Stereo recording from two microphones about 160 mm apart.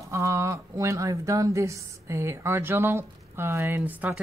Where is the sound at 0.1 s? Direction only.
20° right (ahead or behind).